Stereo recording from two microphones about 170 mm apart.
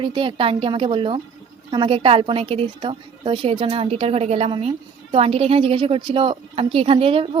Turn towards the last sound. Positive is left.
turn(degrees=-35)  # may be behind; listen again after turning